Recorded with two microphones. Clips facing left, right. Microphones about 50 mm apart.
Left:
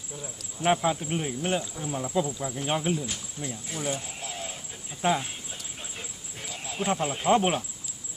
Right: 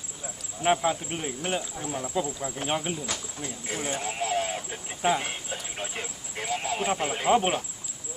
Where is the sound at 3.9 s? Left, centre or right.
Right.